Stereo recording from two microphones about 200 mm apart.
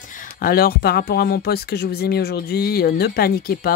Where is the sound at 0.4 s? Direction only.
50° left (ahead or behind).